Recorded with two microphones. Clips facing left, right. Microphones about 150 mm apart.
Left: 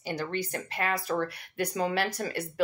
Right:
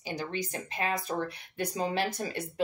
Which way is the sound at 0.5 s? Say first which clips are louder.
Left 1 dB; 20° right (ahead or behind).